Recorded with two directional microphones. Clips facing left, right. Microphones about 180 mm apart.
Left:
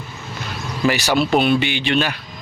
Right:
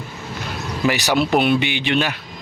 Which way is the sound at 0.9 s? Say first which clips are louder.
Left 1 dB; 15° right (ahead or behind).